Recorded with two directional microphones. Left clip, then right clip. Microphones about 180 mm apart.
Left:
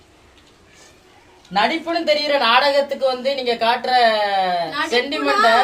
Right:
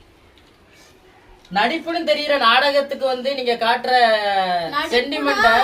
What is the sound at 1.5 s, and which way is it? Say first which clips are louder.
A woman's voice: left 1 dB; 15° left (ahead or behind).